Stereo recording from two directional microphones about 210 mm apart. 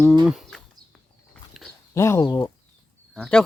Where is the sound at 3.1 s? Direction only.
Centre (ahead or behind).